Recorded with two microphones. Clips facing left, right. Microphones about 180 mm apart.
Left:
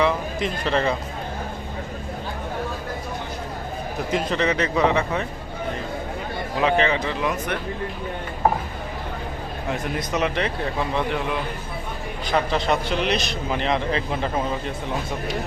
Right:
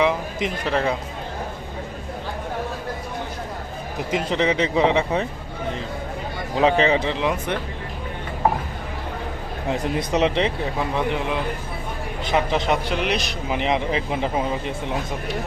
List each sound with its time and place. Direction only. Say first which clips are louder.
0.0 s a sound: right 1 dB; 15° right (ahead or behind)
4.1 s speech: right 1 dB; 15° right (ahead or behind)
6.6 s speech: right 3 dB; 35° right (ahead or behind)
9.7 s a man's voice: right 4 dB; 30° right (ahead or behind); by 14.4 s 15° right (ahead or behind)